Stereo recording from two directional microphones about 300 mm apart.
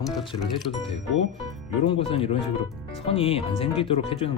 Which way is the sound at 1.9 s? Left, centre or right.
Centre.